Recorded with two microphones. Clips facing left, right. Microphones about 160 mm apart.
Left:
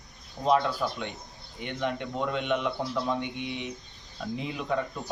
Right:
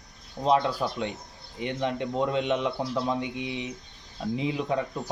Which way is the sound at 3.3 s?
90° right.